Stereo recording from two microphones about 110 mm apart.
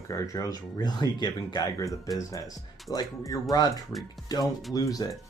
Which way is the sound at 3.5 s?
35° left (ahead or behind).